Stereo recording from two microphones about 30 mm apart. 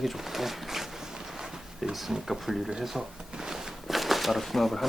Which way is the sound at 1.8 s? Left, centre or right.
Centre.